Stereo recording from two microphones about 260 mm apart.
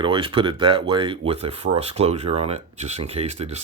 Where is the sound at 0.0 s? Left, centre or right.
Centre.